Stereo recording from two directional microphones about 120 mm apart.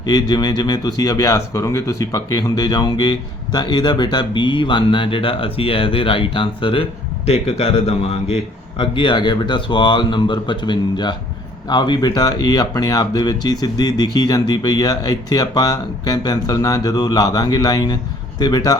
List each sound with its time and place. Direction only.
0.0 s speech: 35° left (ahead or behind)
7.3 s speech: 55° left (ahead or behind)
8.8 s speech: 40° left (ahead or behind)